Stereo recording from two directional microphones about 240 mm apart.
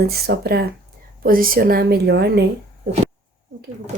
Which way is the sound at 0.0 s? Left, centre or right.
Right.